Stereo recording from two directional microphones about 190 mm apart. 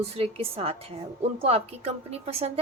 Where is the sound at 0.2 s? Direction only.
30° right (ahead or behind).